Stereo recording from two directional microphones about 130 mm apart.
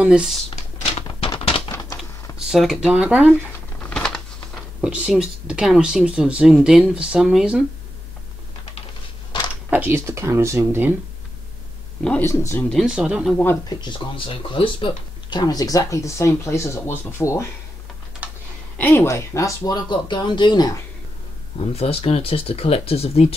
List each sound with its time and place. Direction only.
0.0 s speech: 5° right (ahead or behind)
1.0 s typewriter: 40° left (ahead or behind)
1.7 s typewriter: 30° left (ahead or behind)
2.3 s speech: 5° right (ahead or behind)
3.8 s a sound: 5° left (ahead or behind)
4.8 s speech: 10° right (ahead or behind)
9.7 s speech: 15° right (ahead or behind)
12.0 s speech: 10° left (ahead or behind)
12.3 s speech: 20° left (ahead or behind)
12.8 s speech: 5° right (ahead or behind)
13.7 s speech: 35° left (ahead or behind)
18.2 s a sound: 15° right (ahead or behind)
18.8 s speech: 20° left (ahead or behind)
21.7 s speech: 50° left (ahead or behind)